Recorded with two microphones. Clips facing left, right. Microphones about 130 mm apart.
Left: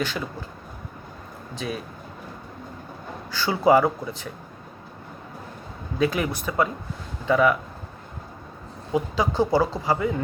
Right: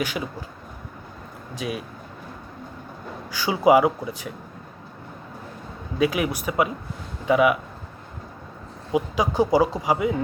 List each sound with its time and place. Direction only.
0.0 s speech: 10° right (ahead or behind)
1.5 s speech: 10° right (ahead or behind)
3.3 s speech: 10° right (ahead or behind)
6.0 s speech: 10° right (ahead or behind)
8.9 s speech: 15° right (ahead or behind)